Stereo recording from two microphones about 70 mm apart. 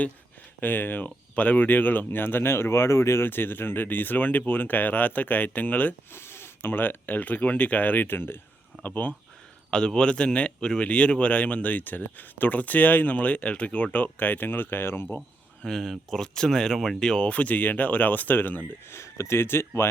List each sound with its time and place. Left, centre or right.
0.6 s speech: left
6.1 s speech: left
9.6 s speech: centre; by 15.0 s left
15.6 s speech: centre; by 18.9 s left
18.9 s speech: left